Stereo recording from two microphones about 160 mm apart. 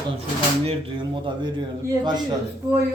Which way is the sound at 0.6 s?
30° right (ahead or behind).